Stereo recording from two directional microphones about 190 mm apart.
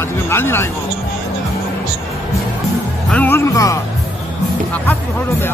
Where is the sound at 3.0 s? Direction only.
10° left (ahead or behind).